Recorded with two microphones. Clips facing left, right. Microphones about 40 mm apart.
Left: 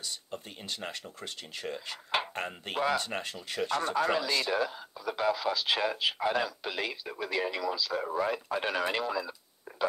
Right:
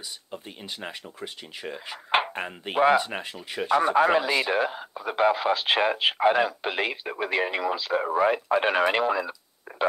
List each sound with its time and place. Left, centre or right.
0.3 s speech: centre
2.0 s dishes: right
2.3 s speech: centre
3.9 s speech: right
9.7 s a sound: right